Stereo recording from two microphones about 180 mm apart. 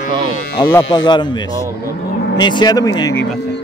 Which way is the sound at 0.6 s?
20° left (ahead or behind).